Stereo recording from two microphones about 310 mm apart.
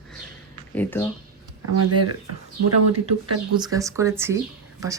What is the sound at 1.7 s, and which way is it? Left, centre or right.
Speech, right.